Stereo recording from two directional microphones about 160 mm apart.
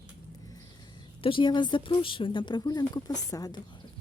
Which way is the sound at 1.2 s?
30° left (ahead or behind).